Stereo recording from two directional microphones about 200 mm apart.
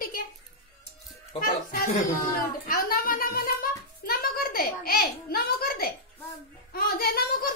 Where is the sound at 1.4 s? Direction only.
45° left (ahead or behind).